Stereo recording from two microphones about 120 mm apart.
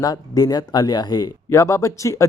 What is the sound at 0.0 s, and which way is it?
Speech, 35° left (ahead or behind).